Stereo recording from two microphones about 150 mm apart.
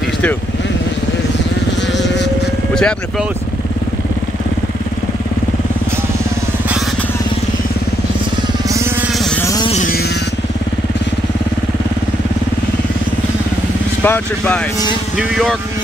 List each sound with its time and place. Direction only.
2.7 s speech: 5° left (ahead or behind)
9.4 s music: 20° left (ahead or behind)
14.0 s speech: 10° left (ahead or behind)
15.1 s speech: centre (ahead or behind)